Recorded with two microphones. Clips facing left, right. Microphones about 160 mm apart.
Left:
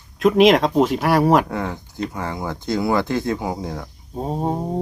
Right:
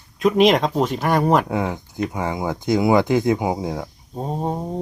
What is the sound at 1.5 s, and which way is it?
Speech, 15° right (ahead or behind).